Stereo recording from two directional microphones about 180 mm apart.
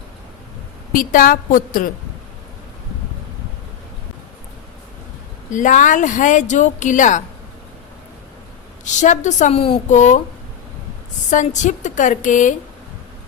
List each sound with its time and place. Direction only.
0.9 s speech: 50° left (ahead or behind)
5.5 s speech: 45° left (ahead or behind)
8.8 s speech: 45° left (ahead or behind)
11.3 s speech: 45° left (ahead or behind)